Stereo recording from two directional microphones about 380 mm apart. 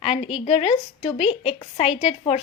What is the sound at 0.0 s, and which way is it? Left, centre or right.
A woman's voice, centre.